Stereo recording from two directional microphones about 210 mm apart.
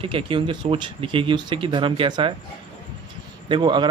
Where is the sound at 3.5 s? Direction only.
20° right (ahead or behind).